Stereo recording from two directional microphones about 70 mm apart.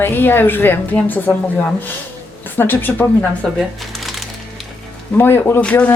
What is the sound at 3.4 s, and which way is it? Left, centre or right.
Speech, centre.